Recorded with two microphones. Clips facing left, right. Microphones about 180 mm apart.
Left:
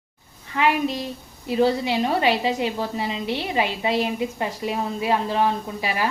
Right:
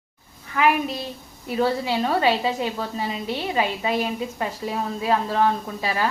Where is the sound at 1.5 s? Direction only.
25° left (ahead or behind).